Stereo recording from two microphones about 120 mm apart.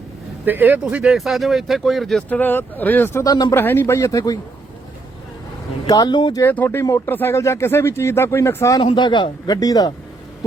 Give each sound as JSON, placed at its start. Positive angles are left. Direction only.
{"t": 0.4, "sound": "speech", "side_deg": -15}
{"t": 2.4, "sound": "speech", "side_deg": 15}
{"t": 3.2, "sound": "speech", "side_deg": 35}
{"t": 3.5, "sound": "speech", "side_deg": 15}
{"t": 5.9, "sound": "speech", "side_deg": 35}
{"t": 6.4, "sound": "speech", "side_deg": 15}
{"t": 8.8, "sound": "speech", "side_deg": 45}